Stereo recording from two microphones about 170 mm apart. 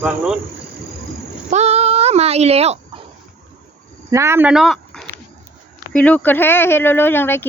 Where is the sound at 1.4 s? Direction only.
40° right (ahead or behind).